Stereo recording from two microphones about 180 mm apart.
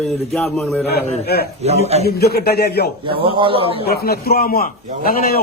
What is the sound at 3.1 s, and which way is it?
Speech, 30° right (ahead or behind).